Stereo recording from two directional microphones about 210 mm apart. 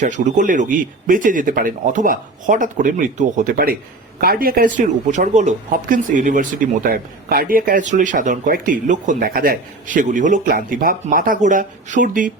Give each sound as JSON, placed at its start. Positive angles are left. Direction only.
{"t": 0.0, "sound": "speech", "side_deg": -35}